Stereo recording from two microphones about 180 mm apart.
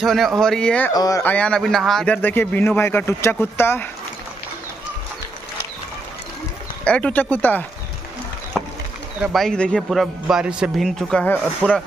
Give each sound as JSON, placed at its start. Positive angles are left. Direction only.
{"t": 0.0, "sound": "a man's voice", "side_deg": 0}
{"t": 0.9, "sound": "a man's voice", "side_deg": 20}
{"t": 6.8, "sound": "a man's voice", "side_deg": 5}
{"t": 8.5, "sound": "a sound", "side_deg": 0}
{"t": 9.2, "sound": "a man's voice", "side_deg": 0}